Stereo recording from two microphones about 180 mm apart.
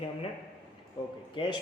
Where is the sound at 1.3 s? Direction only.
30° left (ahead or behind).